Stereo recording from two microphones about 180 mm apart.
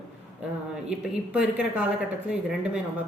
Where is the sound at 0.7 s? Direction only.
5° right (ahead or behind).